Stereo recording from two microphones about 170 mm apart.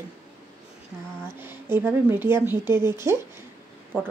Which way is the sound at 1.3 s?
15° right (ahead or behind).